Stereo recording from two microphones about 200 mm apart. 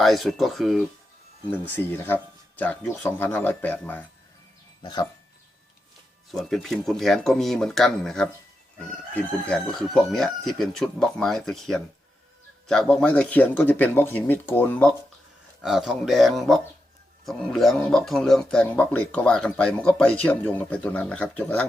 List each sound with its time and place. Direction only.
0.0 s crowing: centre (ahead or behind)
1.5 s speech: 10° left (ahead or behind)
4.8 s speech: 20° left (ahead or behind)
6.3 s crowing: centre (ahead or behind)
12.6 s speech: 5° left (ahead or behind)
15.6 s crowing: centre (ahead or behind)
20.2 s speech: 10° left (ahead or behind)